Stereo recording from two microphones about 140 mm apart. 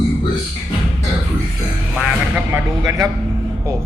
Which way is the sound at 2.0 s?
5° right (ahead or behind).